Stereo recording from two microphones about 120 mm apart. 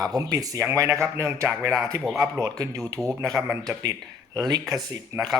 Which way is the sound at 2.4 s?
30° right (ahead or behind).